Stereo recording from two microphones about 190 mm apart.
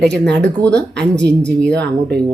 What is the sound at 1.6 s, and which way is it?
Speech, 60° right (ahead or behind).